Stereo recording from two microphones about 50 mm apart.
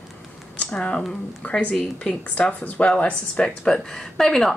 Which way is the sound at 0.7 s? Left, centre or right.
Centre.